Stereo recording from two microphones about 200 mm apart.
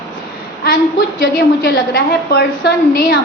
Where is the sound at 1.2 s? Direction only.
55° left (ahead or behind).